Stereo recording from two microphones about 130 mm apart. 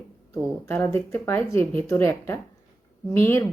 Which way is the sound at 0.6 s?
20° left (ahead or behind).